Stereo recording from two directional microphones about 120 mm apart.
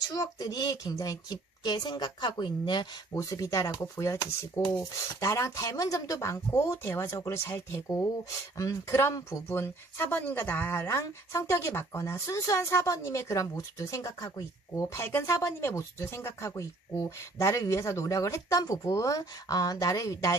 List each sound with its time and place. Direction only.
0.1 s a woman's voice: 30° left (ahead or behind)
3.2 s speech: 30° left (ahead or behind)